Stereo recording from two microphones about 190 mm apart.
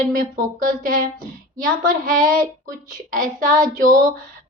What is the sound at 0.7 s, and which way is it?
A woman's voice, 45° right (ahead or behind).